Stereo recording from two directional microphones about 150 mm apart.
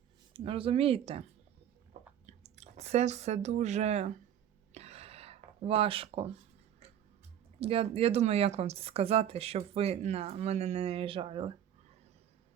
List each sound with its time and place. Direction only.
0.3 s speech: 40° right (ahead or behind)
4.7 s a sound: 45° right (ahead or behind)
7.6 s speech: 40° right (ahead or behind)